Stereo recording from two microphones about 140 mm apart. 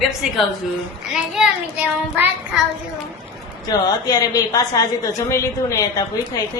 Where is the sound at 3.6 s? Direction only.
25° left (ahead or behind).